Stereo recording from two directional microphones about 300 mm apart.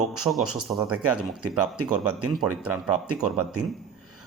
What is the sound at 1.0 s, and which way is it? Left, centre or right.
Speech, right.